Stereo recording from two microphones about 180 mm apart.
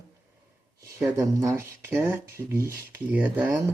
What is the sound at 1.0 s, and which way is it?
Speech, 20° right (ahead or behind).